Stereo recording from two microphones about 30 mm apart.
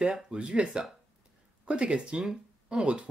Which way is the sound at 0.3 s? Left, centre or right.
Right.